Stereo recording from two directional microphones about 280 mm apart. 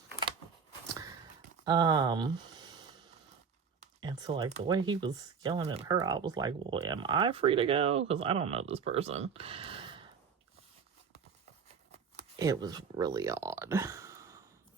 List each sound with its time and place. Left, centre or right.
1.6 s speech: centre
3.8 s speech: centre
12.4 s speech: centre